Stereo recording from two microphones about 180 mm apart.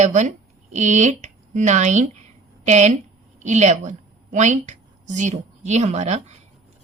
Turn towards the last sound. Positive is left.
turn(degrees=-40)  # may be behind; listen again after turning